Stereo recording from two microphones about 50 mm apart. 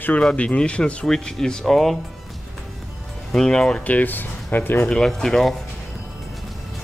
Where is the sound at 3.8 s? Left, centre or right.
Left.